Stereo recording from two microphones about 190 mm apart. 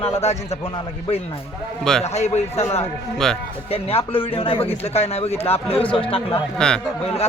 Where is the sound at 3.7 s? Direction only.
30° left (ahead or behind).